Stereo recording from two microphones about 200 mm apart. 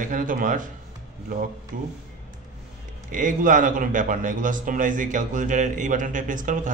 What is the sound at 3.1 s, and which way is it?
A man's voice, 40° right (ahead or behind).